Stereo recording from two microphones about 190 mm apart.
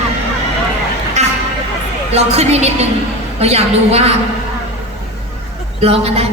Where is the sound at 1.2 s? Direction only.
35° right (ahead or behind).